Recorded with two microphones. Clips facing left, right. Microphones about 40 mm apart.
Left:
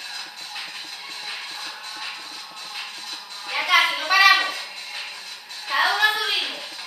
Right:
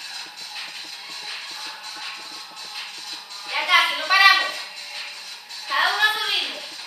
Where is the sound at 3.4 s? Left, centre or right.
Centre.